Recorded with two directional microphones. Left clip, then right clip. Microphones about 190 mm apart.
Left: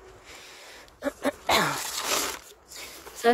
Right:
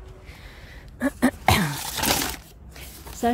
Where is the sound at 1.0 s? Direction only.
15° left (ahead or behind).